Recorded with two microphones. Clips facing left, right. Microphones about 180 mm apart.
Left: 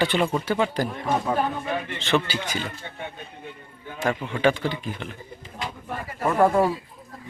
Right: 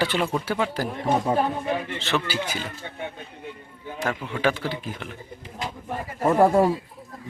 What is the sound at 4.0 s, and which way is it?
Speech, centre (ahead or behind).